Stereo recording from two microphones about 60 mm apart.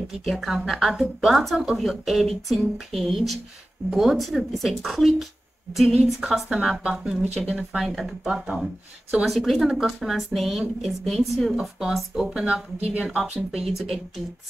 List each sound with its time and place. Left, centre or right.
0.1 s speech: centre
7.8 s speech: centre
12.4 s a woman's voice: centre
13.0 s speech: centre